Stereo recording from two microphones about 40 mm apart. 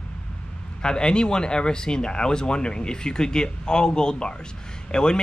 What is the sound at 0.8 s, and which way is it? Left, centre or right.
Speech, left.